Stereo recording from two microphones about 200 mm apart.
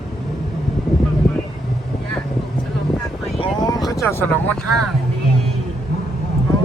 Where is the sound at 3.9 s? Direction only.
15° left (ahead or behind).